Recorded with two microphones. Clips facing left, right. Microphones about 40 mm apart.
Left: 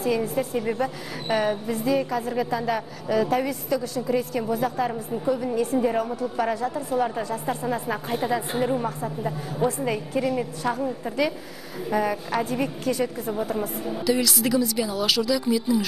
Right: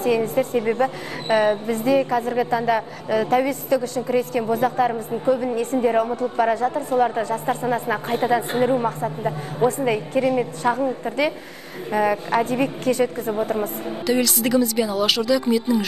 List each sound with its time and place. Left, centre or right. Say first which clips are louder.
0.2 s a woman's voice: right 5 dB; centre
0.6 s a woman's voice: right 5 dB; centre
6.6 s a woman's voice: right 5 dB; centre
7.4 s a woman's voice: right 4 dB; centre
14.2 s a woman's voice: right 3 dB; centre